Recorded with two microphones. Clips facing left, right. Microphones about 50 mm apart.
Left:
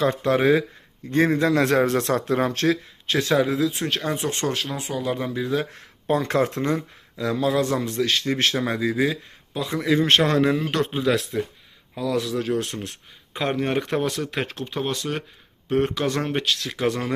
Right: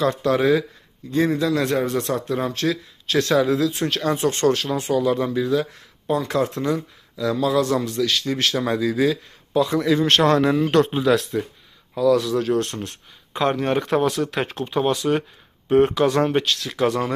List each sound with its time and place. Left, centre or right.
0.0 s speech: left
1.1 s a man's voice: left
1.6 s speech: left
3.1 s speech: centre
5.5 s a man's voice: left
8.5 s speech: left
10.2 s speech: centre